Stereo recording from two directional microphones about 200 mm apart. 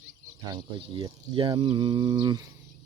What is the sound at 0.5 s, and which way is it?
Speech, 20° right (ahead or behind).